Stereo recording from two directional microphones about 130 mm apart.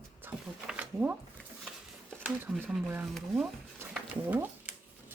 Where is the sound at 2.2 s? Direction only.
15° right (ahead or behind).